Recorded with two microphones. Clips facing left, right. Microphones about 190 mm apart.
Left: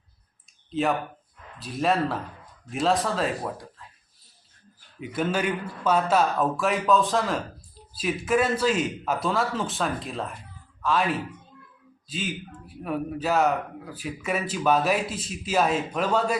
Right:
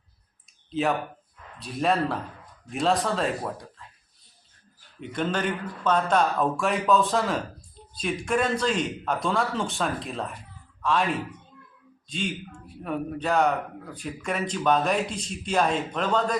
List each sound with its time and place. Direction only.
0.7 s speech: centre (ahead or behind)
4.9 s a man's voice: 5° left (ahead or behind)